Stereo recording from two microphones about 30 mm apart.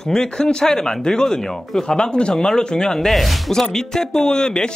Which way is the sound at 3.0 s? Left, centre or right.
Centre.